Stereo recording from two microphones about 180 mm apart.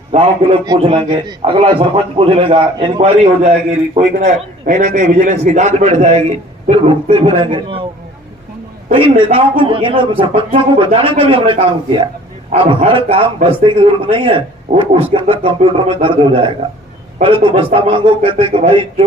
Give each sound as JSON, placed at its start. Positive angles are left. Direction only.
{"t": 0.8, "sound": "a man's voice", "side_deg": -30}
{"t": 9.0, "sound": "a man's voice", "side_deg": -30}